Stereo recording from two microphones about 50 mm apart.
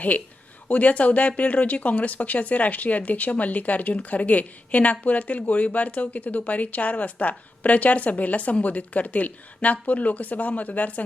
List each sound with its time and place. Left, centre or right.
0.7 s speech: left